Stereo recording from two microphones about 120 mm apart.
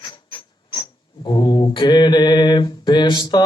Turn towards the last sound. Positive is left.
turn(degrees=40)  # may be behind; listen again after turning